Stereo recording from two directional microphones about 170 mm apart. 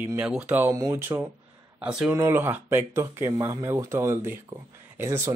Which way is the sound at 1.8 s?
5° right (ahead or behind).